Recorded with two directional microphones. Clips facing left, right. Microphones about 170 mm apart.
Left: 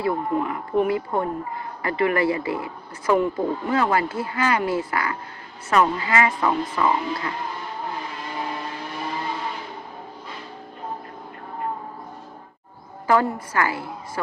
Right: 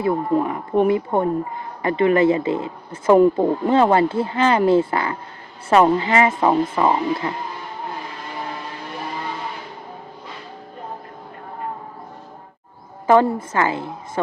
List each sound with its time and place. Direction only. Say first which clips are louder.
0.0 s speech: right 4 dB; 25° right (ahead or behind)
13.1 s speech: right 5 dB; 25° right (ahead or behind)